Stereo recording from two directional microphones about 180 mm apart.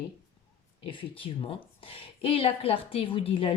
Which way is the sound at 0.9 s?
30° left (ahead or behind).